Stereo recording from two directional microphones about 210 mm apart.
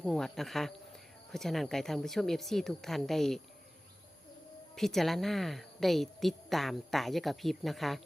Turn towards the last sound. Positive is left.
turn(degrees=0)  # may be behind; listen again after turning